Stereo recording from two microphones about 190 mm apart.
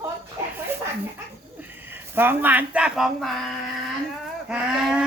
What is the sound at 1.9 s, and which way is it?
Speech, 10° right (ahead or behind).